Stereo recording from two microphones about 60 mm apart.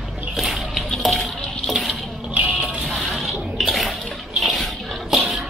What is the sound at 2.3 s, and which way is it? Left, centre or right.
Vehicle, right.